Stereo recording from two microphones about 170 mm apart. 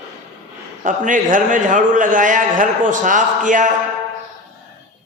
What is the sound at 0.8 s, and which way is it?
A man's voice, 50° right (ahead or behind).